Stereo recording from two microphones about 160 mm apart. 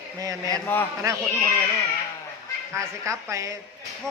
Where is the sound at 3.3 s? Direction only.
20° right (ahead or behind).